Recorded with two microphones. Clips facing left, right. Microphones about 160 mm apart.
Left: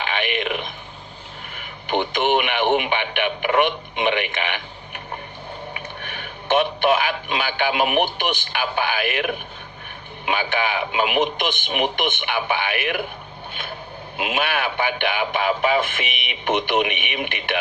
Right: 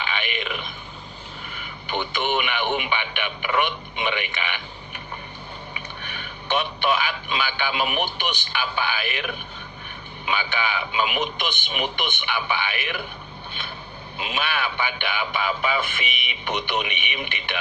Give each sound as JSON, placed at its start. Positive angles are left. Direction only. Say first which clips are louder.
{"t": 0.0, "sound": "a man's voice", "louder": "left 5 dB", "side_deg": 50}
{"t": 5.7, "sound": "a man's voice", "louder": "left 3 dB", "side_deg": 50}
{"t": 14.2, "sound": "a man's voice", "louder": "left 4 dB", "side_deg": 55}